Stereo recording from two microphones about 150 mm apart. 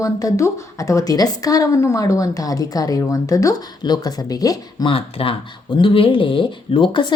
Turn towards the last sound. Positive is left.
turn(degrees=35)  # may be behind; listen again after turning